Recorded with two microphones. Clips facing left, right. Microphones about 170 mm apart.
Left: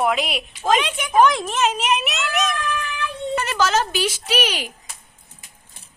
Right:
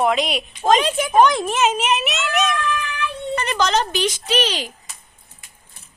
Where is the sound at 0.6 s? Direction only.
35° right (ahead or behind).